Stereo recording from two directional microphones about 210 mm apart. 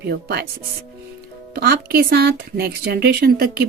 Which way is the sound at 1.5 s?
50° right (ahead or behind).